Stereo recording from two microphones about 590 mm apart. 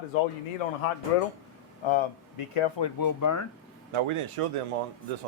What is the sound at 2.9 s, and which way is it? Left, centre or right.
Speech, left.